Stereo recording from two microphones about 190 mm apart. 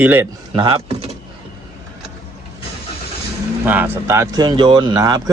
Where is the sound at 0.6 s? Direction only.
30° right (ahead or behind).